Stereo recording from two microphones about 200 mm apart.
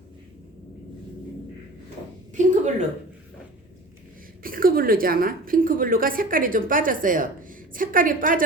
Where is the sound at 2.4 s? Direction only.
40° right (ahead or behind).